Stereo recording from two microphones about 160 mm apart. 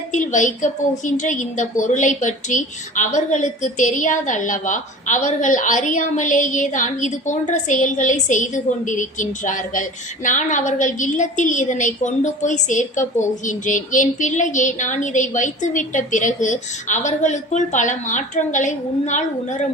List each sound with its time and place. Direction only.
0.1 s a woman's voice: 50° left (ahead or behind)